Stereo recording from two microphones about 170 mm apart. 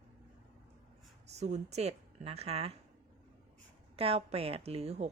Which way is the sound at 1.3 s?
40° right (ahead or behind).